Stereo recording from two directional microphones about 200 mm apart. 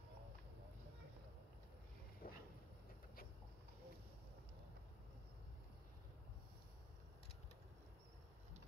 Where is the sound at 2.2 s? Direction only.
45° left (ahead or behind).